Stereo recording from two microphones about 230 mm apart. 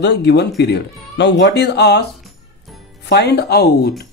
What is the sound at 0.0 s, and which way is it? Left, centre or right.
Speech, left.